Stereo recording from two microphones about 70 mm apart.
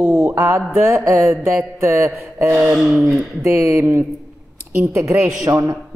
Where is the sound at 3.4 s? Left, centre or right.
Right.